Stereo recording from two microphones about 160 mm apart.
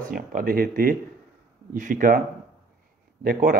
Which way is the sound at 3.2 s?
65° right (ahead or behind).